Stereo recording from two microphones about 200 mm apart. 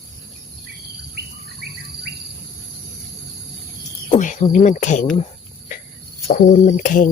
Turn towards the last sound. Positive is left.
turn(degrees=40)  # may be behind; listen again after turning